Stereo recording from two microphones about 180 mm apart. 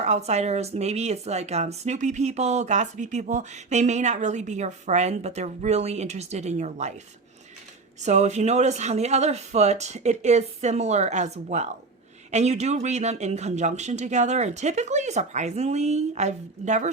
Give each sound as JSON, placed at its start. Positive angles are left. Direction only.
{"t": 0.0, "sound": "speech", "side_deg": -40}
{"t": 8.0, "sound": "speech", "side_deg": -40}